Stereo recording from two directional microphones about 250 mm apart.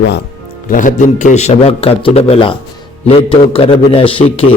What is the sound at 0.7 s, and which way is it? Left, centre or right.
A man's voice, left.